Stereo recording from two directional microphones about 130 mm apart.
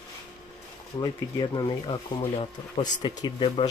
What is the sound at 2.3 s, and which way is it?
Speech, 45° left (ahead or behind).